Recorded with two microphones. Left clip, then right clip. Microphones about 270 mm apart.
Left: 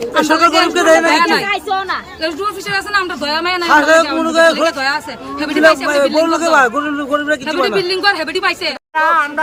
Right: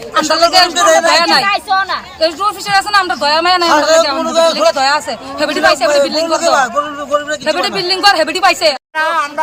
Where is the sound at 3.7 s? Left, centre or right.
Centre.